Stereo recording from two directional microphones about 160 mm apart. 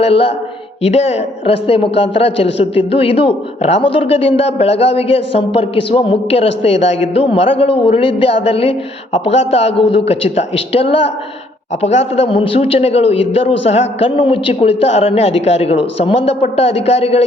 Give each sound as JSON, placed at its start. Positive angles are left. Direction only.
{"t": 0.0, "sound": "a man's voice", "side_deg": 35}